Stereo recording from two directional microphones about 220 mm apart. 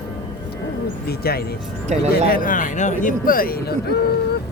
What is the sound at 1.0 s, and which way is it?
A man's voice, 45° left (ahead or behind).